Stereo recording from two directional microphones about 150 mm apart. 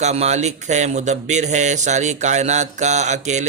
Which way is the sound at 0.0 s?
45° right (ahead or behind).